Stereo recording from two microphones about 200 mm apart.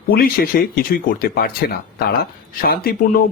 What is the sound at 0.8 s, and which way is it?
Speech, 45° left (ahead or behind).